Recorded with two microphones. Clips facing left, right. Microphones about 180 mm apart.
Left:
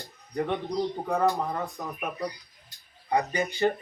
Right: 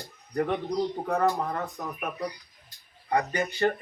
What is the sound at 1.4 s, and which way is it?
Speech, 10° left (ahead or behind).